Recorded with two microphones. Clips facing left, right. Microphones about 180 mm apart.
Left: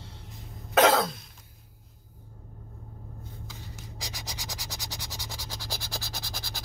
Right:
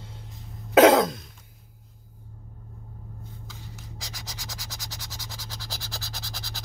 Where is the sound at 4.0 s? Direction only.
15° left (ahead or behind).